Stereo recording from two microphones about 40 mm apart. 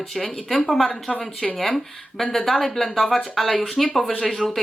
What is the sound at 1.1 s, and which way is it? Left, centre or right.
Speech, left.